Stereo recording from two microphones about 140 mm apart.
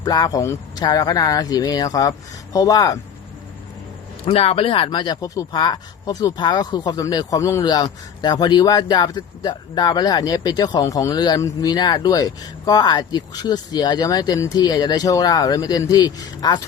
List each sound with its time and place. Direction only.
0.0 s speech: 30° left (ahead or behind)
4.3 s speech: 45° left (ahead or behind); by 16.6 s 25° left (ahead or behind)